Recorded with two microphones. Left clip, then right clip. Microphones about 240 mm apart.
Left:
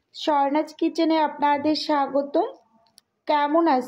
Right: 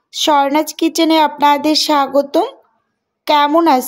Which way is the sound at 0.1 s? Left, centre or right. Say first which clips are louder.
Right 9 dB; right.